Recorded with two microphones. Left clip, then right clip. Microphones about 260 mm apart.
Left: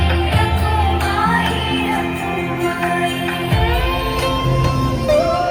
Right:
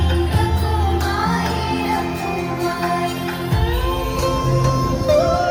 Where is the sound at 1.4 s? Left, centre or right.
Centre.